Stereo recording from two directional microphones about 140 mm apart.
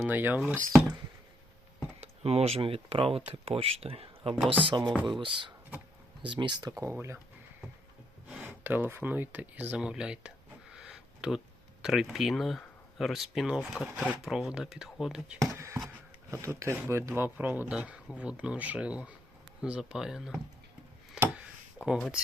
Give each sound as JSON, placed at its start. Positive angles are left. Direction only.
{"t": 0.0, "sound": "speech", "side_deg": -15}
{"t": 0.5, "sound": "speech", "side_deg": 5}
{"t": 2.0, "sound": "speech", "side_deg": -45}
{"t": 4.6, "sound": "speech", "side_deg": -35}
{"t": 8.3, "sound": "speech", "side_deg": -10}
{"t": 10.8, "sound": "a sound", "side_deg": -5}
{"t": 11.8, "sound": "speech", "side_deg": -5}
{"t": 15.4, "sound": "speech", "side_deg": -20}
{"t": 21.8, "sound": "speech", "side_deg": 0}